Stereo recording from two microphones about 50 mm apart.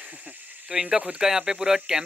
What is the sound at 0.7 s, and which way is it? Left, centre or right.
Speech, centre.